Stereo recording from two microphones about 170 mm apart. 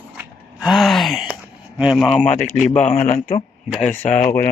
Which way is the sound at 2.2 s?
45° left (ahead or behind).